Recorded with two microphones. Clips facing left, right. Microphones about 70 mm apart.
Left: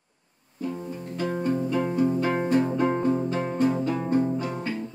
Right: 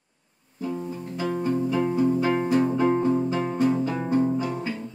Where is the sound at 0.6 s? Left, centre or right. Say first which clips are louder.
Right 2 dB; centre.